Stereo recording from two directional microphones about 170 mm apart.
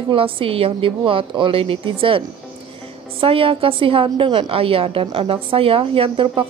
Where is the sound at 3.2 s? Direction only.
30° right (ahead or behind).